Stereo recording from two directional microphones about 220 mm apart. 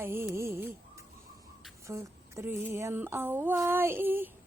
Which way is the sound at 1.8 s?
15° right (ahead or behind).